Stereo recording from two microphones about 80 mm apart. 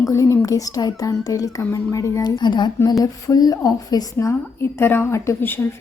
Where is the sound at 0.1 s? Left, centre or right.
Left.